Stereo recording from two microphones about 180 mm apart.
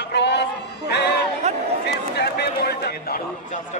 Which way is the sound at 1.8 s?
65° left (ahead or behind).